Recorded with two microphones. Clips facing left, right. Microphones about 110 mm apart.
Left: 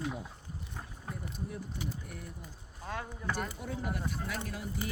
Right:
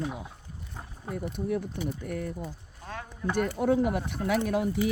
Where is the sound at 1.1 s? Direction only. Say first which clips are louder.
Right 12 dB; 60° right (ahead or behind).